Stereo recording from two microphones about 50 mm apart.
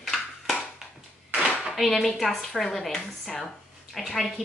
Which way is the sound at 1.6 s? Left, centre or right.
Centre.